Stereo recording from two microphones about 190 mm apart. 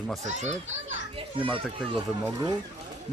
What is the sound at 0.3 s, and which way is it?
Speech, 40° right (ahead or behind).